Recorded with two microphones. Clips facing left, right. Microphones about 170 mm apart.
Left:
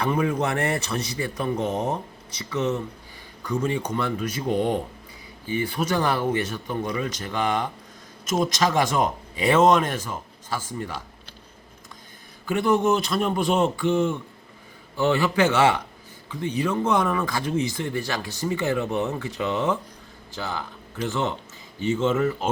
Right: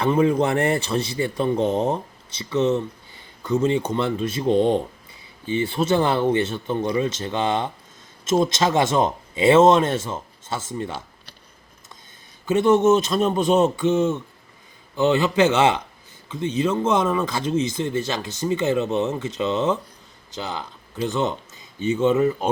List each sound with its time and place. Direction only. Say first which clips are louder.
0.0 s speech: right 5 dB; 25° right (ahead or behind)
12.5 s speech: right 5 dB; 25° right (ahead or behind)